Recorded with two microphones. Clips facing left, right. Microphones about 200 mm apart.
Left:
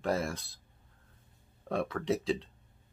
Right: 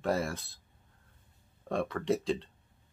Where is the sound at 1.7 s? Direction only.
Centre (ahead or behind).